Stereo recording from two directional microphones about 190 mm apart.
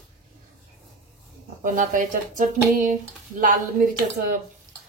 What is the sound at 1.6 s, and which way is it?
Speech, 45° right (ahead or behind).